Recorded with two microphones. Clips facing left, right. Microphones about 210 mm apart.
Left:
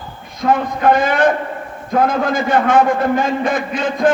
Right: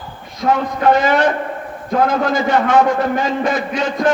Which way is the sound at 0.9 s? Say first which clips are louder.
Even; 50° left (ahead or behind).